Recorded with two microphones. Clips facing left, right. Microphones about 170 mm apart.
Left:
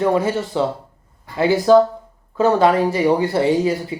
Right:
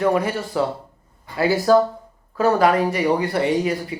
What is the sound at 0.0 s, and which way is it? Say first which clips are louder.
Speech: left 2 dB; 25° left (ahead or behind).